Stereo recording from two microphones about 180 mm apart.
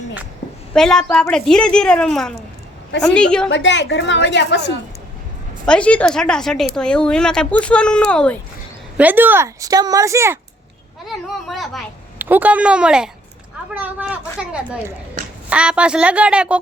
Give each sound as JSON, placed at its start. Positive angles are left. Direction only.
{"t": 0.7, "sound": "a woman's voice", "side_deg": 5}
{"t": 3.5, "sound": "a woman's voice", "side_deg": 80}
{"t": 5.6, "sound": "a woman's voice", "side_deg": 5}
{"t": 9.0, "sound": "speech", "side_deg": -10}
{"t": 11.1, "sound": "a woman's voice", "side_deg": 0}